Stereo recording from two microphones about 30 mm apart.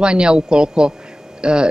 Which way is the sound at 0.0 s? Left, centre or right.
Right.